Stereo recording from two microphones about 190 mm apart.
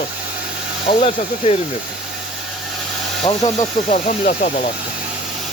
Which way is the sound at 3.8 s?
40° left (ahead or behind).